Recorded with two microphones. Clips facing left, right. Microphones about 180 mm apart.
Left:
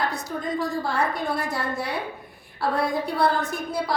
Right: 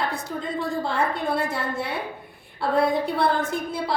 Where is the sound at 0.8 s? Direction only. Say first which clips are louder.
Right 1 dB; 25° right (ahead or behind).